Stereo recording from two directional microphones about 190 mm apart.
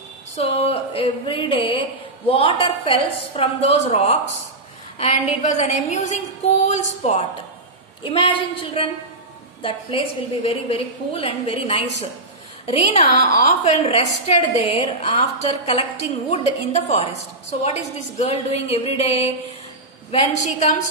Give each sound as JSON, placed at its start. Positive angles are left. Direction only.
{"t": 0.4, "sound": "a woman's voice", "side_deg": 30}